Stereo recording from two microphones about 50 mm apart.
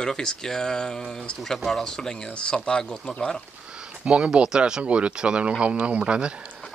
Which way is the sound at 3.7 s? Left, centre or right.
Right.